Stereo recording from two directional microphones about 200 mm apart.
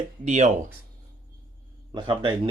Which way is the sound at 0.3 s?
35° right (ahead or behind).